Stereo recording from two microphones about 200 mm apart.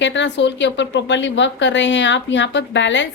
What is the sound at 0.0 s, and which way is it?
A woman's voice, 65° left (ahead or behind).